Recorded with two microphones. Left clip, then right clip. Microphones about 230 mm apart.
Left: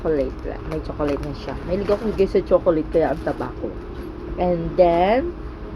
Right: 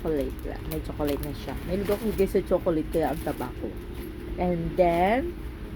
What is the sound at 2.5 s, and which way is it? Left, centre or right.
Speech, centre.